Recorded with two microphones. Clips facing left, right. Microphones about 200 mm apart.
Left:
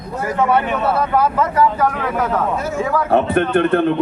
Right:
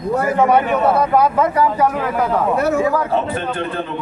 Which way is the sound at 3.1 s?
65° left (ahead or behind).